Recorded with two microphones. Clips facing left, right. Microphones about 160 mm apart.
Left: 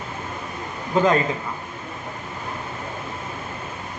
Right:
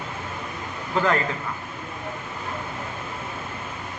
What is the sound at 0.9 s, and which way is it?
Speech, 20° left (ahead or behind).